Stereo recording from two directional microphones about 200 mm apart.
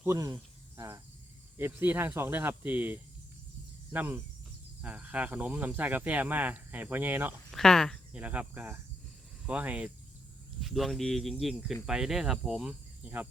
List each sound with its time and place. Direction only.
0.0 s speech: 15° right (ahead or behind)
0.8 s cricket: 15° right (ahead or behind)
1.5 s speech: 10° right (ahead or behind)
7.5 s speech: centre (ahead or behind)